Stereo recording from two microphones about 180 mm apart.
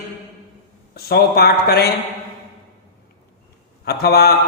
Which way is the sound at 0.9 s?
60° left (ahead or behind).